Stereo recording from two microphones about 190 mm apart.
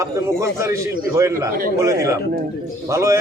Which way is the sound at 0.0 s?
15° right (ahead or behind).